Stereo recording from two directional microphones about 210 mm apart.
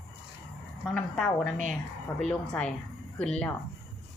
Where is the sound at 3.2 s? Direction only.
5° left (ahead or behind).